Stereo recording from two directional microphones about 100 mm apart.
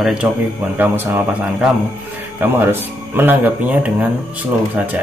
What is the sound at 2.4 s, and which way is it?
Speech, 20° right (ahead or behind).